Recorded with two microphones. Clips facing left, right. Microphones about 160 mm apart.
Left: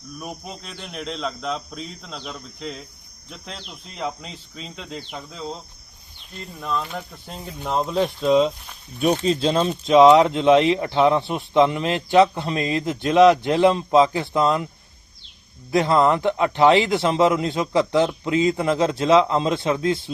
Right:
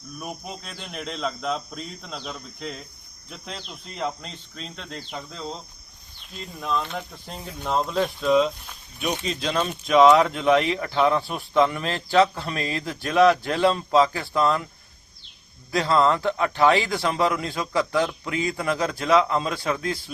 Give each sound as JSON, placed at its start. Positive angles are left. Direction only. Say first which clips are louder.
{"t": 0.2, "sound": "speech", "louder": "even", "side_deg": 0}
{"t": 8.2, "sound": "speech", "louder": "left 2 dB", "side_deg": 20}
{"t": 8.4, "sound": "speech", "louder": "left 3 dB", "side_deg": 0}
{"t": 9.0, "sound": "speech", "louder": "left 8 dB", "side_deg": 35}
{"t": 15.7, "sound": "speech", "louder": "left 3 dB", "side_deg": 20}